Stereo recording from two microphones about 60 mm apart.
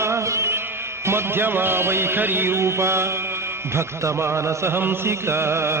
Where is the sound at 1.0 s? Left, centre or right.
Right.